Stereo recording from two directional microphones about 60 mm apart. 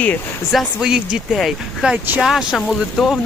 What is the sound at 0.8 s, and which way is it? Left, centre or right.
Speech, centre.